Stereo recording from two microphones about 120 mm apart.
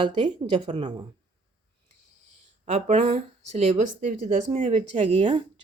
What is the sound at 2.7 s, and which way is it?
Speech, 70° right (ahead or behind).